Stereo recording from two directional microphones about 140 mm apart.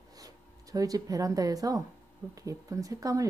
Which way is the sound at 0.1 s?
25° right (ahead or behind).